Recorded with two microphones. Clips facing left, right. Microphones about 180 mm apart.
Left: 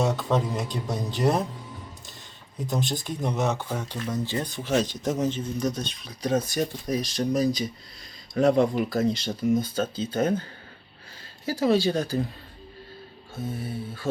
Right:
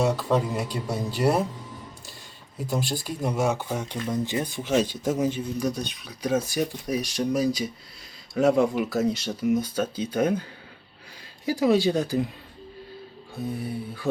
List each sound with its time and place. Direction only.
0.0 s speech: 5° right (ahead or behind)
2.6 s speech: 5° right (ahead or behind)
11.4 s speech: 15° right (ahead or behind)
13.3 s music: centre (ahead or behind)
13.6 s speech: 15° right (ahead or behind)